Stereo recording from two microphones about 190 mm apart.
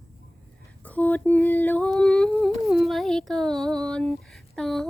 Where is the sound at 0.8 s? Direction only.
10° left (ahead or behind).